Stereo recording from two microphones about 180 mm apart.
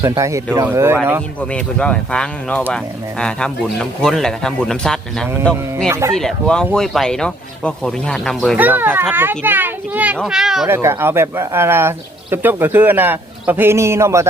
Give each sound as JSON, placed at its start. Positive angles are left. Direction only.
{"t": 0.2, "sound": "speech", "side_deg": -15}
{"t": 1.4, "sound": "speech", "side_deg": 5}
{"t": 5.9, "sound": "speech", "side_deg": -15}
{"t": 6.1, "sound": "speech", "side_deg": 5}
{"t": 8.5, "sound": "a child's voice", "side_deg": -10}
{"t": 10.7, "sound": "speech", "side_deg": -15}